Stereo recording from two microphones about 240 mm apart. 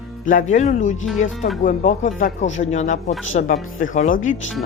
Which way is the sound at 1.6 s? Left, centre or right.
Left.